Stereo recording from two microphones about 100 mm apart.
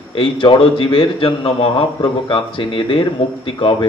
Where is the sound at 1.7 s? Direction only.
50° left (ahead or behind).